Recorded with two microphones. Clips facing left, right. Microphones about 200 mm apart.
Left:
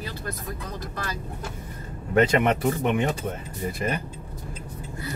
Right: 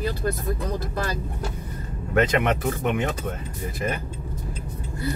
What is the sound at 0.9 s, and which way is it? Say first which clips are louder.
Speech: right 5 dB; 35° right (ahead or behind).